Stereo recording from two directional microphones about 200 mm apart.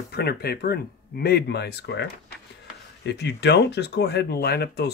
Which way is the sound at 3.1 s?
60° left (ahead or behind).